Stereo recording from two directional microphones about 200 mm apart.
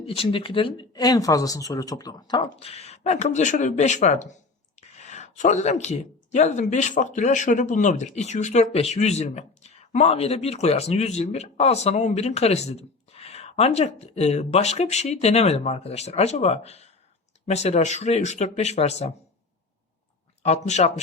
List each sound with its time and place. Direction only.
0.1 s speech: 25° left (ahead or behind)
20.4 s speech: 35° left (ahead or behind)